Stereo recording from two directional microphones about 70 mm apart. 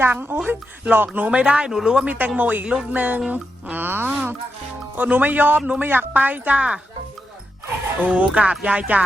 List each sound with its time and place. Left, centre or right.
0.0 s a man's voice: right
1.3 s speech: centre
2.1 s a man's voice: right
8.0 s a man's voice: centre